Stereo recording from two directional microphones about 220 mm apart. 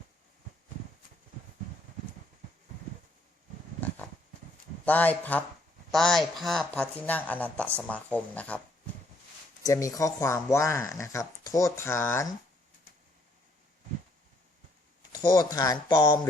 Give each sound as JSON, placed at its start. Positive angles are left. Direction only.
{"t": 3.8, "sound": "a sound", "side_deg": 5}
{"t": 4.9, "sound": "speech", "side_deg": 5}
{"t": 9.6, "sound": "speech", "side_deg": 15}
{"t": 15.1, "sound": "speech", "side_deg": 15}